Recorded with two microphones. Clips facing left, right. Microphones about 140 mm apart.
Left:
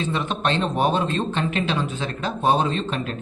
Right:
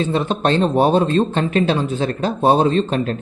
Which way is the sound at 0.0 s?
35° right (ahead or behind).